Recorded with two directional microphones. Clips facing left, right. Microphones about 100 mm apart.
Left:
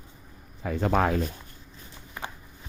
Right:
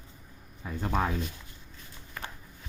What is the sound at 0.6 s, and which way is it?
Speech, 85° left.